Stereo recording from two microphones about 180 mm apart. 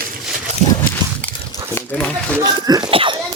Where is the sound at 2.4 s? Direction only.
20° right (ahead or behind).